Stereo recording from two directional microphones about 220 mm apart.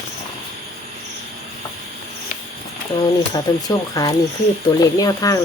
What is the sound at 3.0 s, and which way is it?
Speech, 15° left (ahead or behind).